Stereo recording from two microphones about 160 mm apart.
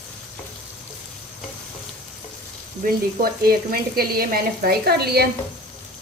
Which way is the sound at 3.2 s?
70° right (ahead or behind).